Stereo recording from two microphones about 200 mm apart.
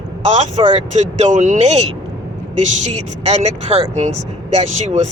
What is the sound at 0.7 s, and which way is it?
Speech, 35° right (ahead or behind).